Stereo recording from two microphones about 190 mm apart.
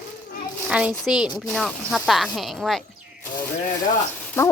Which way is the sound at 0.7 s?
5° right (ahead or behind).